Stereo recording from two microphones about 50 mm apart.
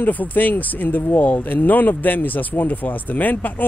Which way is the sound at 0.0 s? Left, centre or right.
Left.